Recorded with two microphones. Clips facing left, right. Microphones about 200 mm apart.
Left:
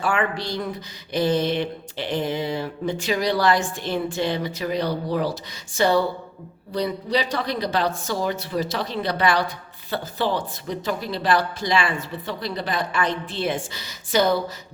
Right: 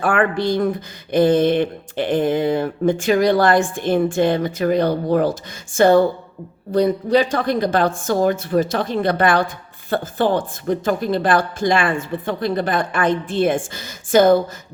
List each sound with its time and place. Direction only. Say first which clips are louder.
0.0 s speech: right 6 dB; 55° right (ahead or behind)